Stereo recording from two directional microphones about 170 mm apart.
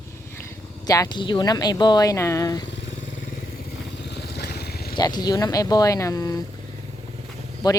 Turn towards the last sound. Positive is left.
turn(degrees=25)  # may be behind; listen again after turning